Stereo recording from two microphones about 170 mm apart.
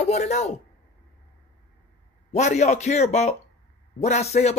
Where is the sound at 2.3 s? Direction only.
45° left (ahead or behind).